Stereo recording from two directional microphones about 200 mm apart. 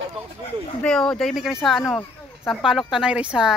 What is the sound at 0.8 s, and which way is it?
Speech, 5° left (ahead or behind).